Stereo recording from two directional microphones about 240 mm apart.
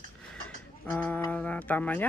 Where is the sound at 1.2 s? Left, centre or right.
Centre.